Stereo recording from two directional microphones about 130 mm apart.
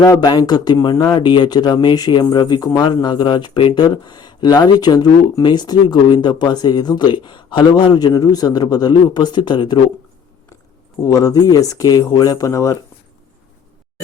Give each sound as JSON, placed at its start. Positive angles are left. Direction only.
{"t": 0.0, "sound": "speech", "side_deg": 30}
{"t": 11.0, "sound": "speech", "side_deg": 25}